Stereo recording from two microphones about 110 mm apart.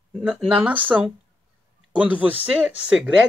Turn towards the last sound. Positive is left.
turn(degrees=-10)  # may be behind; listen again after turning